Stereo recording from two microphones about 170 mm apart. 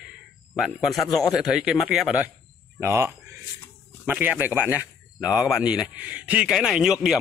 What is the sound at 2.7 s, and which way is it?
A man's voice, 15° right (ahead or behind).